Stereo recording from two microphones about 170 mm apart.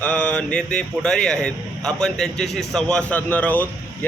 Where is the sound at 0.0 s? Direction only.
5° left (ahead or behind).